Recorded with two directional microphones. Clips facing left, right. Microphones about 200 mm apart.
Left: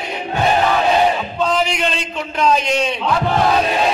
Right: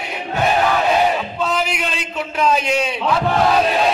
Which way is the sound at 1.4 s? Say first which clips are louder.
Left 5 dB; 5° right (ahead or behind).